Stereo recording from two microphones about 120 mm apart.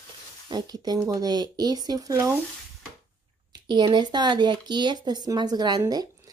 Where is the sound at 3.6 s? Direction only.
40° right (ahead or behind).